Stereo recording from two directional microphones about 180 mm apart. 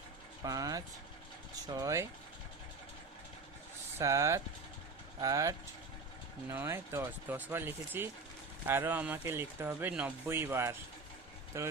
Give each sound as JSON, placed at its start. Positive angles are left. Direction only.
{"t": 0.4, "sound": "speech", "side_deg": -20}
{"t": 3.9, "sound": "speech", "side_deg": -15}